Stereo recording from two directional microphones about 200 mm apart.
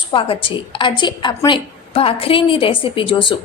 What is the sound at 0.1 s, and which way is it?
A woman's voice, 25° left (ahead or behind).